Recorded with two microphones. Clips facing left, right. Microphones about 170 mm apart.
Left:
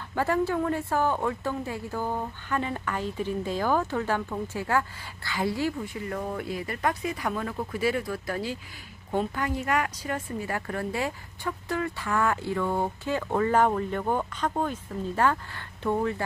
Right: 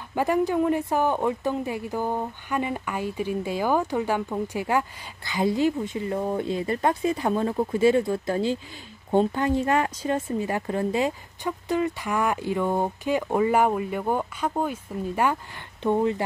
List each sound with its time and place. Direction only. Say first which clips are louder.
0.1 s speech: right 3 dB; 15° right (ahead or behind)